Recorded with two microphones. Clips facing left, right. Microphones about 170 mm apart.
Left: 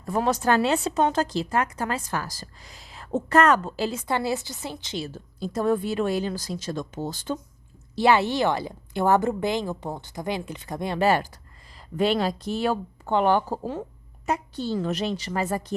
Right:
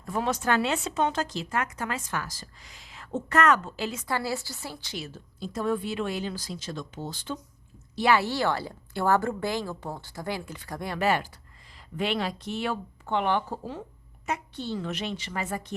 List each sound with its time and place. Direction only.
0.0 s speech: 40° left (ahead or behind); by 5.0 s 20° left (ahead or behind)
5.0 s a woman's voice: 40° left (ahead or behind)
7.9 s a woman's voice: 25° left (ahead or behind); by 13.8 s 45° left (ahead or behind)
14.3 s speech: 35° left (ahead or behind)